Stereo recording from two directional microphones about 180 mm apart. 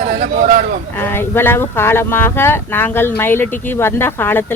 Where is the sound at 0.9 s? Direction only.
10° left (ahead or behind).